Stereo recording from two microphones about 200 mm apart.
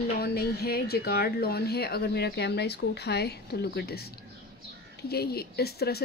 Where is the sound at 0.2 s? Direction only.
50° left (ahead or behind).